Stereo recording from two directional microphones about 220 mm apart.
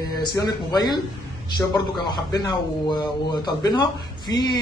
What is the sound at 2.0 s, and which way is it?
Speech, 20° left (ahead or behind).